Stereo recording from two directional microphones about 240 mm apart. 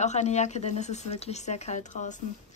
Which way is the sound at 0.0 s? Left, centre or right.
Left.